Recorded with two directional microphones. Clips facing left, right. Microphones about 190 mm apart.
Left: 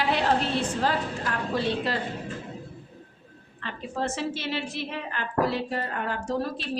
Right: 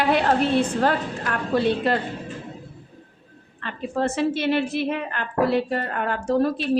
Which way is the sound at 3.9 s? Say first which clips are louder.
Right 7 dB; 55° right (ahead or behind).